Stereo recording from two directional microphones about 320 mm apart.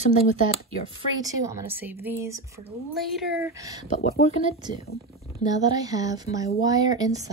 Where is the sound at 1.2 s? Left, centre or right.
Centre.